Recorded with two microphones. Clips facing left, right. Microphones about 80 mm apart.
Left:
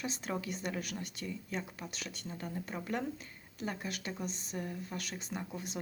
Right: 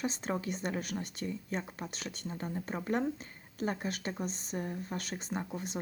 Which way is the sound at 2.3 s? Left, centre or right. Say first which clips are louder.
Right 2 dB; right.